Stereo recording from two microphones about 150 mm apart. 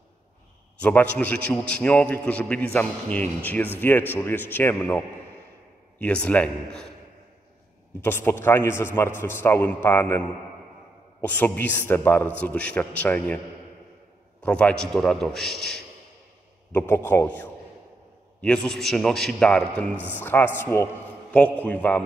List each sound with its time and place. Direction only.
0.7 s a man's voice: 10° left (ahead or behind)
8.0 s a man's voice: 15° left (ahead or behind)
14.4 s a man's voice: 5° left (ahead or behind)
16.7 s a man's voice: 15° left (ahead or behind)